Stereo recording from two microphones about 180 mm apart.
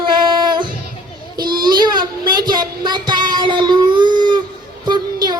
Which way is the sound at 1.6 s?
25° right (ahead or behind).